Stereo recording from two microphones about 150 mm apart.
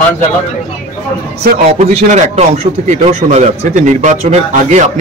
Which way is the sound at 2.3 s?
50° right (ahead or behind).